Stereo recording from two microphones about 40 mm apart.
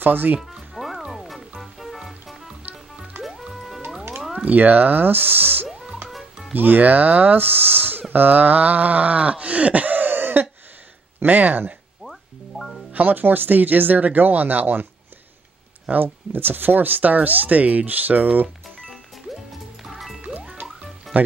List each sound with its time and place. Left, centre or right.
0.0 s speech: right
0.7 s music: centre
4.5 s speech: right
6.0 s music: centre
6.5 s speech: right
7.3 s speech: right
11.2 s speech: right
12.0 s music: centre
12.9 s speech: right
15.9 s speech: right
19.8 s music: centre